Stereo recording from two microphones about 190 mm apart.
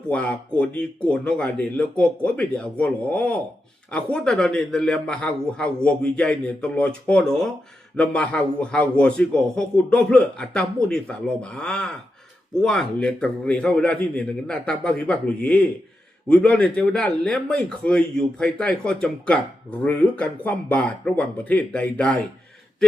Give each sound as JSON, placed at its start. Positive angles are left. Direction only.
{"t": 0.1, "sound": "a man's voice", "side_deg": 5}